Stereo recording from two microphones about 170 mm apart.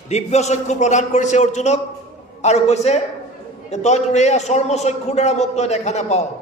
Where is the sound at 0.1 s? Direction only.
40° left (ahead or behind).